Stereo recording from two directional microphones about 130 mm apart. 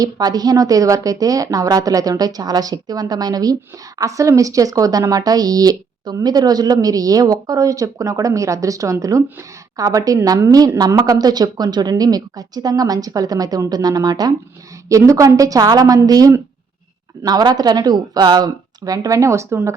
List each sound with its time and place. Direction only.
0.0 s a woman's voice: 30° right (ahead or behind)